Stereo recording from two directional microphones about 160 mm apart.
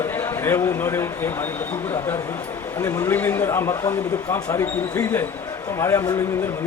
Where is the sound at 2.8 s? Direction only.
15° left (ahead or behind).